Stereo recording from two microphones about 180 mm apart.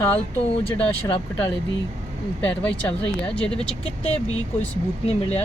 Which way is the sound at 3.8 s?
35° left (ahead or behind).